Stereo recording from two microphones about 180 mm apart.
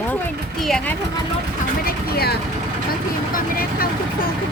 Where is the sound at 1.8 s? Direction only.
60° left (ahead or behind).